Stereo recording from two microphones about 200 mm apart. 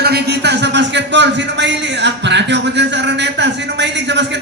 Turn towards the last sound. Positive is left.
turn(degrees=-60)  # may be behind; listen again after turning